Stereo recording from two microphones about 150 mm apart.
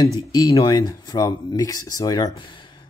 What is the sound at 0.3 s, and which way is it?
Speech, 25° left (ahead or behind).